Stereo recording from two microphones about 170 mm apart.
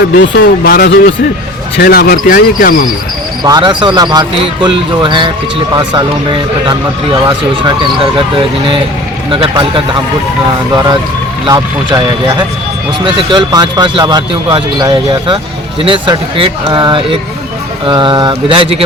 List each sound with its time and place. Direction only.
0.2 s speech: 90° left
1.8 s speech: 65° left (ahead or behind)
3.4 s speech: 25° right (ahead or behind)
11.4 s speech: 25° right (ahead or behind)